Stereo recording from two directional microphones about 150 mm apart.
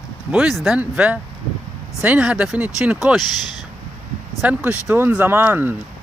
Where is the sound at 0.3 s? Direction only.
10° right (ahead or behind).